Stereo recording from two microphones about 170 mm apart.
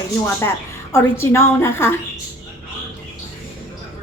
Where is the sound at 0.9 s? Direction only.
15° left (ahead or behind).